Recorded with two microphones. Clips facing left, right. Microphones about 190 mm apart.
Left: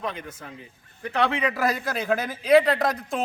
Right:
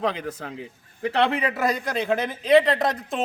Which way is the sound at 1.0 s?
70° right (ahead or behind).